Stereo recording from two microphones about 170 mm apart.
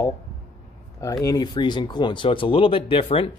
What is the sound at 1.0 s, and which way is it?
Speech, 20° left (ahead or behind).